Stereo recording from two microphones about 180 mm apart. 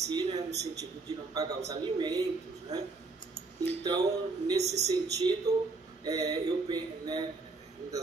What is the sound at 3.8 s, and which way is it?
Speech, 25° right (ahead or behind).